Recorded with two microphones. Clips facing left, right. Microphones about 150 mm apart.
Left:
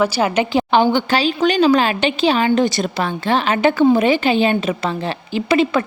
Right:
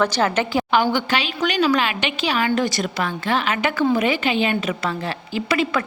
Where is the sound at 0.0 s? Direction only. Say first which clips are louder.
Left 3 dB; 15° left (ahead or behind).